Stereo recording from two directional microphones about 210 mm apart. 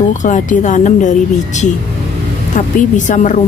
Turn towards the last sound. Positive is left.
turn(degrees=35)  # may be behind; listen again after turning